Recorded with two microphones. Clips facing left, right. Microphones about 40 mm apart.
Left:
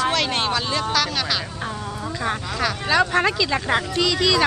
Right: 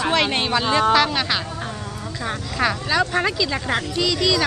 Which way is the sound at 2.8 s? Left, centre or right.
Centre.